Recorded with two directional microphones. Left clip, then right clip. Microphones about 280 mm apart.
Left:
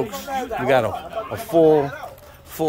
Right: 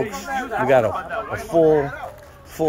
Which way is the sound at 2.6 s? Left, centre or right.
Centre.